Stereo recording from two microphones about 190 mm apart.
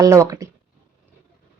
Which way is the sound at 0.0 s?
15° right (ahead or behind).